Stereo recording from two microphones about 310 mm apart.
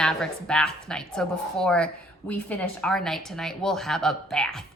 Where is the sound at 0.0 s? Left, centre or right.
Centre.